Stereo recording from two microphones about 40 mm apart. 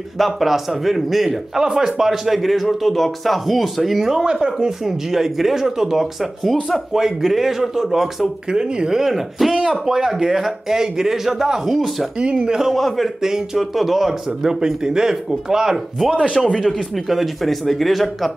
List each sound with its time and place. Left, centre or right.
0.2 s speech: centre
1.6 s speech: centre
4.5 s speech: centre
8.5 s speech: right; by 12.1 s centre
12.2 s speech: right
12.7 s speech: centre
13.2 s speech: centre
16.9 s speech: centre